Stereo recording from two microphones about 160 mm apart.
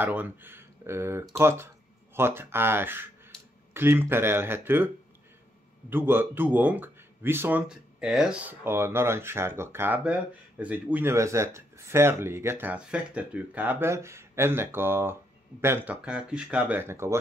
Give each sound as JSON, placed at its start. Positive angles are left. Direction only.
{"t": 0.0, "sound": "speech", "side_deg": -10}